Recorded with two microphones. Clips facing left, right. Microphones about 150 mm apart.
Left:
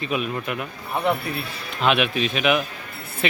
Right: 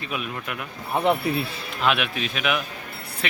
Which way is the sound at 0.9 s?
25° right (ahead or behind).